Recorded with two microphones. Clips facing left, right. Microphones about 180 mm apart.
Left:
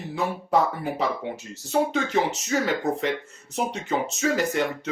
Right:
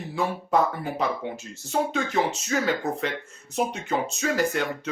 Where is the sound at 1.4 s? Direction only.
20° left (ahead or behind).